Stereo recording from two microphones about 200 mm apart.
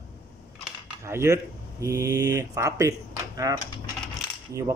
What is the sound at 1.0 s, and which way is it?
Speech, 15° right (ahead or behind).